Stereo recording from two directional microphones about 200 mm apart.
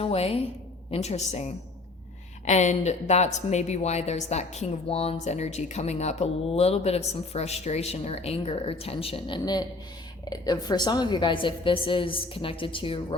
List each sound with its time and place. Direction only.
0.0 s a woman's voice: 30° left (ahead or behind)